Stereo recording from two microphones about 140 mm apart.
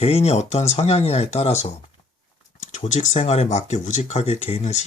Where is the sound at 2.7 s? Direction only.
50° left (ahead or behind).